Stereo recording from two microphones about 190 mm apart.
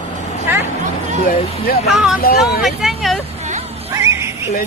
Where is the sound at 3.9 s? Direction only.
15° right (ahead or behind).